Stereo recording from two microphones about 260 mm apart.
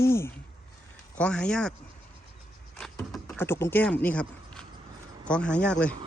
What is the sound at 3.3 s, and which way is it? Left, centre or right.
Speech, centre.